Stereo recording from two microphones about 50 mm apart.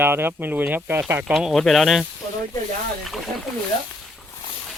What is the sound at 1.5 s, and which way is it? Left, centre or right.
Speech, centre.